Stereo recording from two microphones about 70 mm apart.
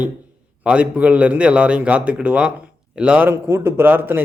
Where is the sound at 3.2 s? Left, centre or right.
Right.